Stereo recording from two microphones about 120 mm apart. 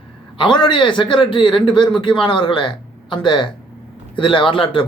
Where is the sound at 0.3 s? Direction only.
40° left (ahead or behind).